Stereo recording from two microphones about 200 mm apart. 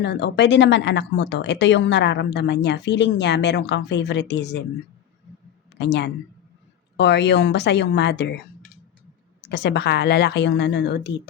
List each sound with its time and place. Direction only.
0.0 s speech: 60° left (ahead or behind)
5.7 s speech: 60° left (ahead or behind)
9.4 s speech: 55° left (ahead or behind)